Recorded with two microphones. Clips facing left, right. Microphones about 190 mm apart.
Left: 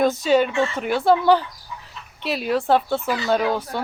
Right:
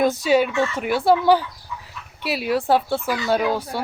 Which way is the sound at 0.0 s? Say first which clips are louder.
Even; 10° right (ahead or behind).